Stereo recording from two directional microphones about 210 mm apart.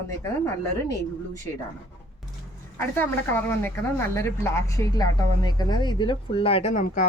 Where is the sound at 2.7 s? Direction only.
10° left (ahead or behind).